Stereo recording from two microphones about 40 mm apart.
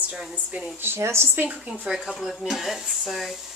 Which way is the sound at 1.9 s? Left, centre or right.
Right.